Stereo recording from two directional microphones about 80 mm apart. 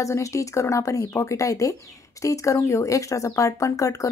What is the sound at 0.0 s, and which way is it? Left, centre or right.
Speech, left.